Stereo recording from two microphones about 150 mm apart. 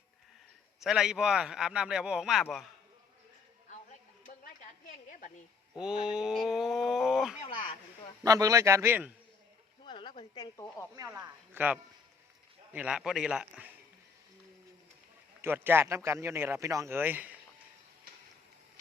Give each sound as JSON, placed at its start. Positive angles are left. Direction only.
{"t": 0.8, "sound": "a man's voice", "side_deg": -5}
{"t": 5.7, "sound": "a man's voice", "side_deg": -5}
{"t": 8.2, "sound": "a man's voice", "side_deg": -25}
{"t": 9.8, "sound": "speech", "side_deg": 30}
{"t": 10.9, "sound": "a man's voice", "side_deg": -20}
{"t": 15.4, "sound": "speech", "side_deg": -15}